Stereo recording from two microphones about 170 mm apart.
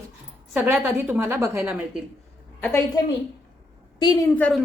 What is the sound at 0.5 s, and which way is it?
A woman's voice, 10° right (ahead or behind).